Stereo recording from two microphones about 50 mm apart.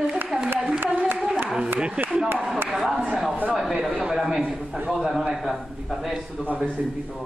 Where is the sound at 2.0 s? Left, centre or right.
Right.